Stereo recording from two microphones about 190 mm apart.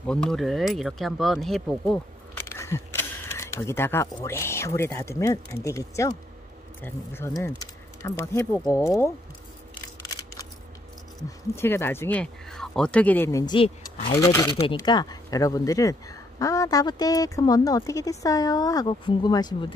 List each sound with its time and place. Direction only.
0.0 s speech: 5° left (ahead or behind)
2.4 s speech: 15° left (ahead or behind)
11.5 s speech: 15° left (ahead or behind)
13.6 s speech: 30° left (ahead or behind)
14.2 s speech: 20° left (ahead or behind)